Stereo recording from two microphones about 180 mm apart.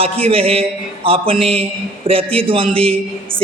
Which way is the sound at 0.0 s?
30° right (ahead or behind).